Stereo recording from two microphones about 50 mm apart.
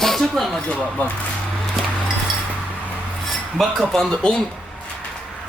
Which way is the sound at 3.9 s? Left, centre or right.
Centre.